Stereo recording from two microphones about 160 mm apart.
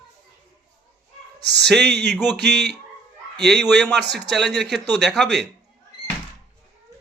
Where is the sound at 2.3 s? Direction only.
90° right.